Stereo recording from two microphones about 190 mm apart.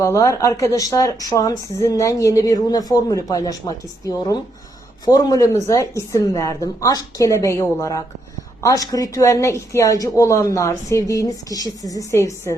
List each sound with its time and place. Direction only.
0.0 s a woman's voice: 15° left (ahead or behind)